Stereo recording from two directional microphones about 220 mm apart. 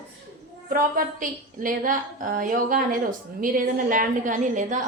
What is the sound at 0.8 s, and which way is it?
A woman's voice, 40° right (ahead or behind).